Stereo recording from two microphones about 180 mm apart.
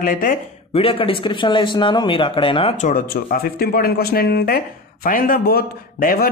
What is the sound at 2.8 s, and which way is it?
A man's voice, 50° left (ahead or behind).